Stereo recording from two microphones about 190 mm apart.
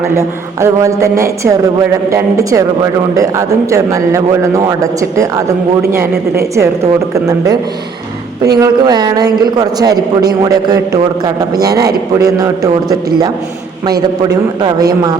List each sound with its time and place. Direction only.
0.2 s a man's voice: 15° right (ahead or behind)
8.5 s a man's voice: 20° right (ahead or behind)
12.2 s a man's voice: 20° right (ahead or behind)
14.3 s a man's voice: 20° right (ahead or behind)